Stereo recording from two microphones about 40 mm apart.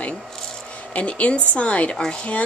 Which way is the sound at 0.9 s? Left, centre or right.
Left.